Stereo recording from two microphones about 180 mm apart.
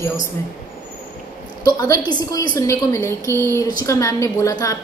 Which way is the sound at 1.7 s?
20° left (ahead or behind).